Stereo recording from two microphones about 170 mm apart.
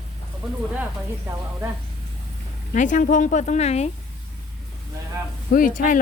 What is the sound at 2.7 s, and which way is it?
Speech, 50° left (ahead or behind).